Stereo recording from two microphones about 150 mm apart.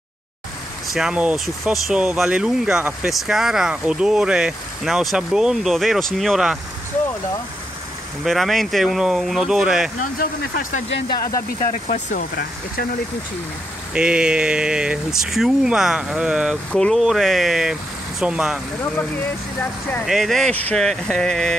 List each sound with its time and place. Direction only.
0.9 s speech: 5° right (ahead or behind)
8.2 s speech: centre (ahead or behind)
9.9 s speech: 65° left (ahead or behind)
13.9 s speech: 5° right (ahead or behind)
20.1 s speech: centre (ahead or behind)